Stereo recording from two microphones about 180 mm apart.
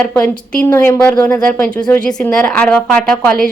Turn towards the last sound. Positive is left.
turn(degrees=5)  # may be behind; listen again after turning